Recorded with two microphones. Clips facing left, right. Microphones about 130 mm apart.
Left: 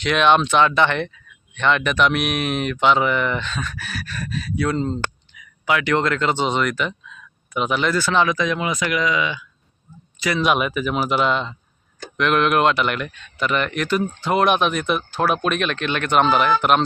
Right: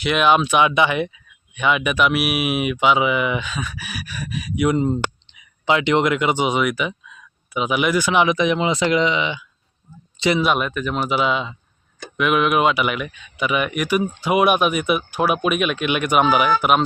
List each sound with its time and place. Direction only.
0.0 s speech: 5° right (ahead or behind); by 10.4 s 25° right (ahead or behind)
10.4 s speech: centre (ahead or behind)